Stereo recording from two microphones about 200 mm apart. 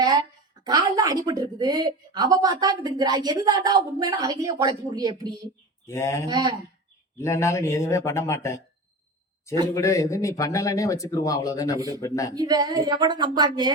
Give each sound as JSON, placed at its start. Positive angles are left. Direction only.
{"t": 0.6, "sound": "a woman's voice", "side_deg": -20}
{"t": 5.9, "sound": "speech", "side_deg": 15}
{"t": 6.2, "sound": "a woman's voice", "side_deg": -20}
{"t": 7.2, "sound": "speech", "side_deg": 15}
{"t": 9.7, "sound": "speech", "side_deg": 15}
{"t": 12.3, "sound": "a woman's voice", "side_deg": -20}